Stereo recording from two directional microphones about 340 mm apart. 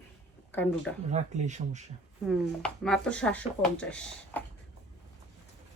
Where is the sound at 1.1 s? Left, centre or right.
Right.